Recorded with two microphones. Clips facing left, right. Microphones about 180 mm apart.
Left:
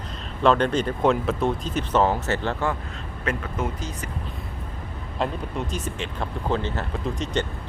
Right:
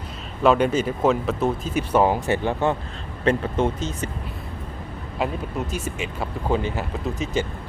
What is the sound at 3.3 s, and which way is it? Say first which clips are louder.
Speech: right 7 dB; 30° right (ahead or behind).